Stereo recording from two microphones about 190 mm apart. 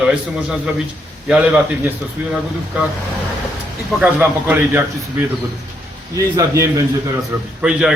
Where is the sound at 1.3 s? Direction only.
10° right (ahead or behind).